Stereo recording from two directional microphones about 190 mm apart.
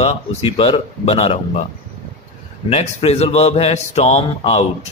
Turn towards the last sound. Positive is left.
turn(degrees=35)  # may be behind; listen again after turning